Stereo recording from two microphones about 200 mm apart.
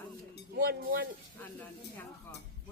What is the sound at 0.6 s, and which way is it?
Speech, 50° right (ahead or behind).